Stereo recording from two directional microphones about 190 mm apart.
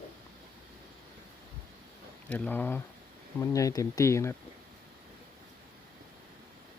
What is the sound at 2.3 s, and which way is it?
Speech, 10° left (ahead or behind).